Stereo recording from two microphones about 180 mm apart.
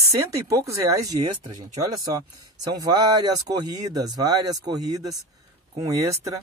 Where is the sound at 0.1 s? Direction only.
20° right (ahead or behind).